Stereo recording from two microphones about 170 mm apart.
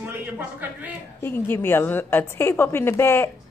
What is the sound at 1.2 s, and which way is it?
A woman's voice, 15° left (ahead or behind).